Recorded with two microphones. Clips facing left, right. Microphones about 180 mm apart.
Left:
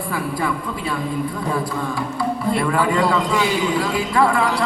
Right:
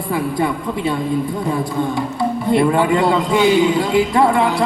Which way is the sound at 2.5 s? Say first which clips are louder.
Right 6 dB; 25° right (ahead or behind).